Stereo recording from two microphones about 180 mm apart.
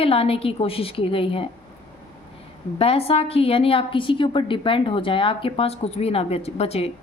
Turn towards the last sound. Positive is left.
turn(degrees=35)  # may be behind; listen again after turning